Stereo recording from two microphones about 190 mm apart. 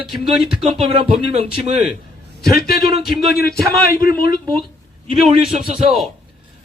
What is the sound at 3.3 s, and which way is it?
A man's voice, 55° left (ahead or behind).